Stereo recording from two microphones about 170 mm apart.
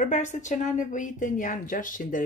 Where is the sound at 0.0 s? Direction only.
45° left (ahead or behind).